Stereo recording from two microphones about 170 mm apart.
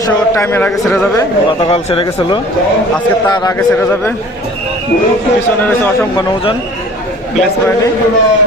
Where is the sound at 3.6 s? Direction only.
15° left (ahead or behind).